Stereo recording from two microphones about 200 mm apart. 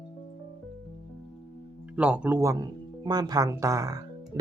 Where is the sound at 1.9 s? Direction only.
5° right (ahead or behind).